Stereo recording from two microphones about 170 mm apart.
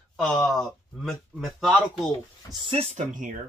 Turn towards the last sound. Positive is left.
turn(degrees=-45)  # may be behind; listen again after turning